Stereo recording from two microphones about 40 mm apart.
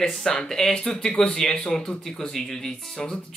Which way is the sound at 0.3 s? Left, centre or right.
Centre.